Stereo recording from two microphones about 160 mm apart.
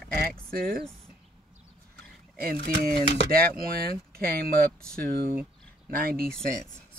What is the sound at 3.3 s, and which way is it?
Speech, 70° right (ahead or behind).